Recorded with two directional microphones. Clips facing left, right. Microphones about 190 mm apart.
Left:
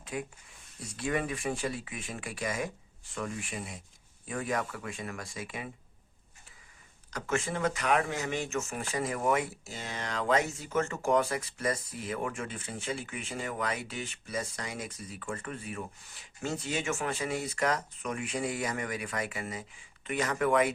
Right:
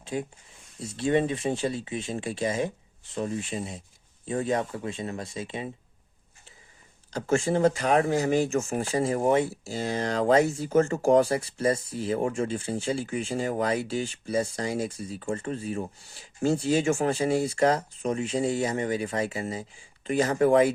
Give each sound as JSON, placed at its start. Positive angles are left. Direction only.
{"t": 0.0, "sound": "speech", "side_deg": -30}
{"t": 7.1, "sound": "speech", "side_deg": -30}